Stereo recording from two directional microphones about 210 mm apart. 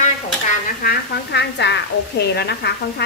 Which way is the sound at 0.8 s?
50° left (ahead or behind).